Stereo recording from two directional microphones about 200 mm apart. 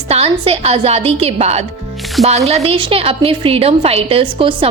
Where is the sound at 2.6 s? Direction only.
25° right (ahead or behind).